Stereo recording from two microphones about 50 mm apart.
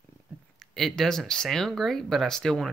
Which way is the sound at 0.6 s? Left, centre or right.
Centre.